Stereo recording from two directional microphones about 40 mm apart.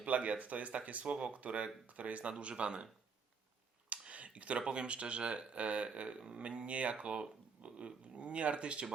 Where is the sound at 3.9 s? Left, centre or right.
Right.